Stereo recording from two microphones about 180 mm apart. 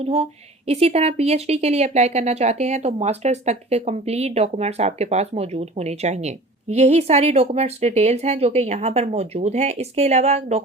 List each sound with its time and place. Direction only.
0.0 s speech: 35° right (ahead or behind)